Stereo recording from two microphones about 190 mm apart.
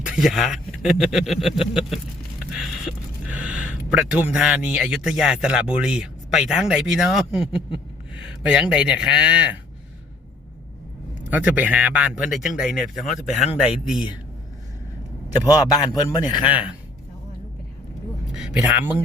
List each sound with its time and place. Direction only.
0.0 s speech: centre (ahead or behind)
11.3 s speech: 10° right (ahead or behind)
15.6 s a man's voice: 20° left (ahead or behind)
18.3 s speech: 5° right (ahead or behind)